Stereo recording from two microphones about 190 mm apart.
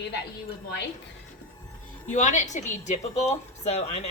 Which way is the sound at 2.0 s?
40° left (ahead or behind).